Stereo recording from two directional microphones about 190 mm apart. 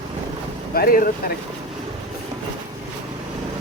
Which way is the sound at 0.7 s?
50° left (ahead or behind).